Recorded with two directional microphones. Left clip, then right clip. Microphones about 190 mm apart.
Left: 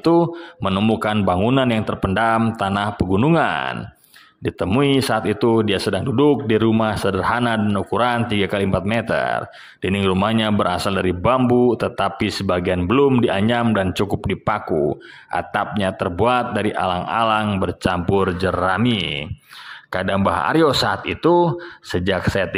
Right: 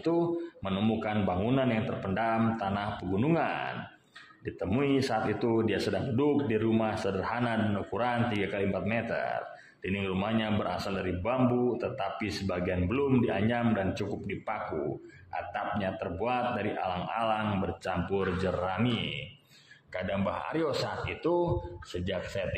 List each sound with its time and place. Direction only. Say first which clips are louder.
0.0 s speech: left 12 dB; 40° left (ahead or behind)